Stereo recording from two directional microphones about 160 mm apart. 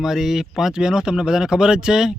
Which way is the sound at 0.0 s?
Centre (ahead or behind).